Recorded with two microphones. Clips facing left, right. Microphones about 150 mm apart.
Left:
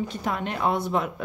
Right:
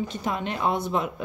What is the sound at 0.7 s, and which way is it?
Speech, 10° left (ahead or behind).